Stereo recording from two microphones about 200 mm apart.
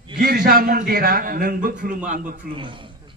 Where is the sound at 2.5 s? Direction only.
25° right (ahead or behind).